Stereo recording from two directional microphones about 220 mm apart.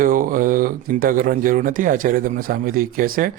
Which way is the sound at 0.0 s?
40° right (ahead or behind).